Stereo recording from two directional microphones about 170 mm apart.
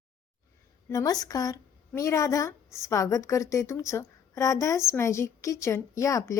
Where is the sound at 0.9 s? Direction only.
20° left (ahead or behind).